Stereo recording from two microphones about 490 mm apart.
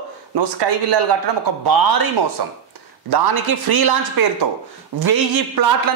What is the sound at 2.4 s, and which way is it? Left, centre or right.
A man's voice, right.